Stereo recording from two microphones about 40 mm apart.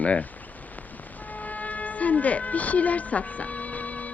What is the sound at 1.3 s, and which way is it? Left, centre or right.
Train, left.